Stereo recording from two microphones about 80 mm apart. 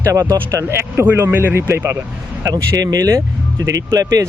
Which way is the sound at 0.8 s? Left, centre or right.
Right.